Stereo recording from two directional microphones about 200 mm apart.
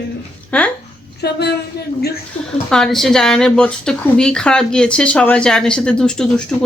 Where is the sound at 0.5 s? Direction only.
5° left (ahead or behind).